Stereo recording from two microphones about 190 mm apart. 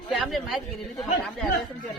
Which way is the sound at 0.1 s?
Centre (ahead or behind).